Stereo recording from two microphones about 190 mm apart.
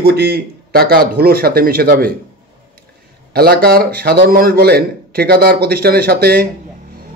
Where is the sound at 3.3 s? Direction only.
55° right (ahead or behind).